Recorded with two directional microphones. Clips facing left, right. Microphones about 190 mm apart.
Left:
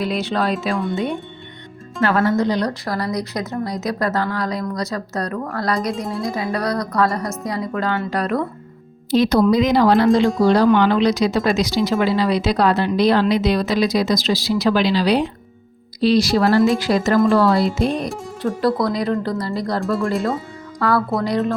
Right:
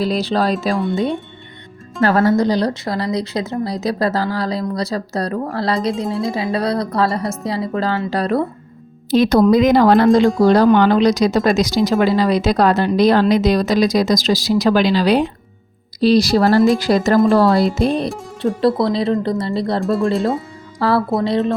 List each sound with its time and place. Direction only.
0.0 s speech: 35° right (ahead or behind)
2.0 s speech: 35° right (ahead or behind)
6.1 s speech: centre (ahead or behind)
6.3 s speech: 25° right (ahead or behind)
9.0 s speech: 55° right (ahead or behind)
16.0 s speech: 40° right (ahead or behind)
19.8 s speech: centre (ahead or behind)
20.7 s speech: 30° right (ahead or behind)